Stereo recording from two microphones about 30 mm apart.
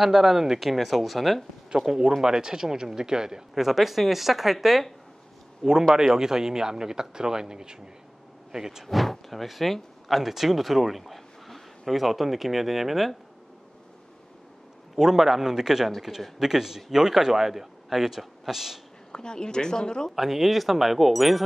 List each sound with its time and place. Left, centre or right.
0.0 s speech: centre
1.9 s speech: right
3.5 s speech: centre
8.8 s speech: centre
15.0 s speech: centre
19.1 s speech: left
20.2 s speech: centre